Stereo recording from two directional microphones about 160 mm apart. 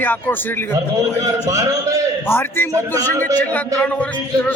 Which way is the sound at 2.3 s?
15° left (ahead or behind).